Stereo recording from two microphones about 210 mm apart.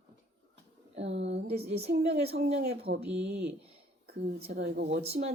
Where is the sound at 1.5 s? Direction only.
30° right (ahead or behind).